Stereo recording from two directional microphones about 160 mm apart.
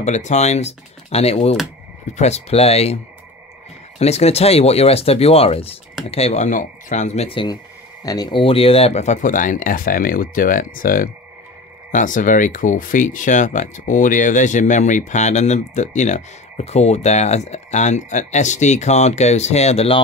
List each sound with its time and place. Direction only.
0.0 s speech: 45° left (ahead or behind)
4.0 s speech: 40° left (ahead or behind)